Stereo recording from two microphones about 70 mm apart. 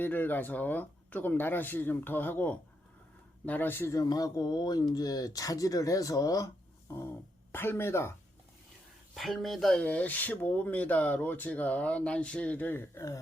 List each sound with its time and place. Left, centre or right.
0.0 s speech: left
3.9 s speech: left
6.9 s speech: left
9.1 s speech: centre
9.8 s speech: left